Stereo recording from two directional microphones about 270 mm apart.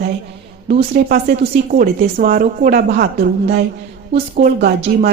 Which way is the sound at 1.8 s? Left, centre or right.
Right.